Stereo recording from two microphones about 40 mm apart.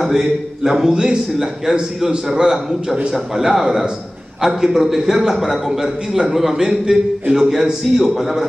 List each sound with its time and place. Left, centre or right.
0.0 s a man's voice: centre